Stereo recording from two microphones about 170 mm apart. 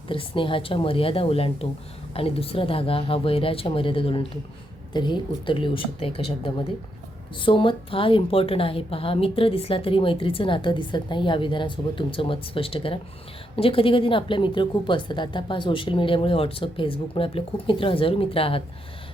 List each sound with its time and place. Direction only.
0.1 s a woman's voice: 30° left (ahead or behind)